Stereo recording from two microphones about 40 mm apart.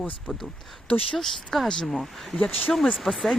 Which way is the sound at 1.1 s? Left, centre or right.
Centre.